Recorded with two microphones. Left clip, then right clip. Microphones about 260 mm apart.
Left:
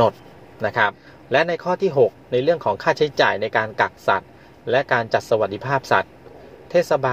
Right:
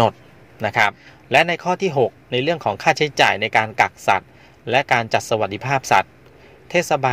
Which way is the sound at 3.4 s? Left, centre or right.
Right.